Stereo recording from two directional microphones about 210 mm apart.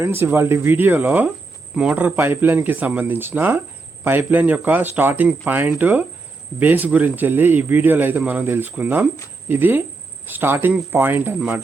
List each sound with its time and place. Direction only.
0.0 s speech: 10° right (ahead or behind)